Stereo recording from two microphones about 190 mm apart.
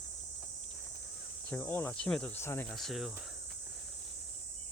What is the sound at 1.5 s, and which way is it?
Cricket, 10° left (ahead or behind).